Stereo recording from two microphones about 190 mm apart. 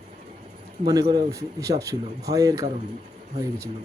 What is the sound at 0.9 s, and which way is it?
Speech, 20° right (ahead or behind).